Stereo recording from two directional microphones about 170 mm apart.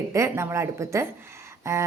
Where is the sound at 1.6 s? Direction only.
15° right (ahead or behind).